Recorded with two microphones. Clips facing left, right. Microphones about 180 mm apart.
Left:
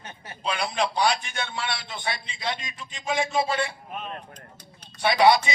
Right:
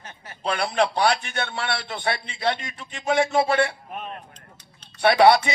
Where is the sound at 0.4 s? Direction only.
60° right (ahead or behind).